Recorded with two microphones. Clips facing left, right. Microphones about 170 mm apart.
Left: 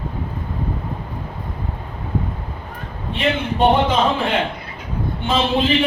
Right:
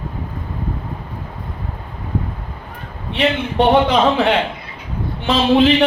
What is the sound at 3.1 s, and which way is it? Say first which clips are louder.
A man's voice: right 4 dB; 70° right (ahead or behind).